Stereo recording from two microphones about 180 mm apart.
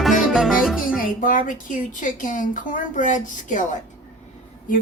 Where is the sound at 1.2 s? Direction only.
50° left (ahead or behind).